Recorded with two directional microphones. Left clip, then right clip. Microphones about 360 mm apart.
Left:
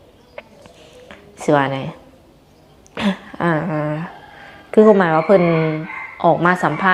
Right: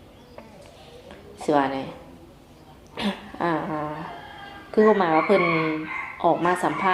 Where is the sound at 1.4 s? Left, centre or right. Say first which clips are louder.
Left 6 dB; left.